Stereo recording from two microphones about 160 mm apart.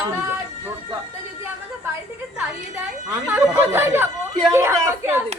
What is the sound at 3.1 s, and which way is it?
Speech, 10° right (ahead or behind).